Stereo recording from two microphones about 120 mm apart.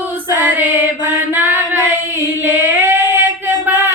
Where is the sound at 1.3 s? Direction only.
15° right (ahead or behind).